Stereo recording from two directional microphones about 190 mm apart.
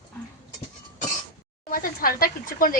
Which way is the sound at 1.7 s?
50° left (ahead or behind).